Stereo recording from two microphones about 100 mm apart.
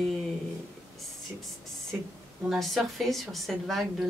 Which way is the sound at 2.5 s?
Centre (ahead or behind).